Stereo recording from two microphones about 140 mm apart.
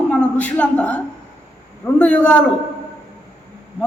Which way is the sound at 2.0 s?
10° left (ahead or behind).